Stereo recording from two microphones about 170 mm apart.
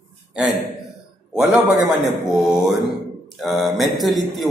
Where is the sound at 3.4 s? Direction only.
Centre (ahead or behind).